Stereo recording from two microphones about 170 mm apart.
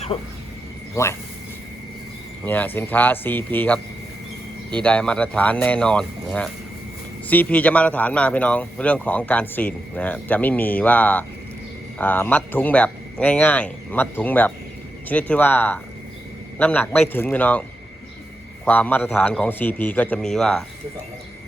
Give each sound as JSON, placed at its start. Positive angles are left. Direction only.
{"t": 1.0, "sound": "speech", "side_deg": 15}
{"t": 2.4, "sound": "speech", "side_deg": 10}
{"t": 4.8, "sound": "speech", "side_deg": 5}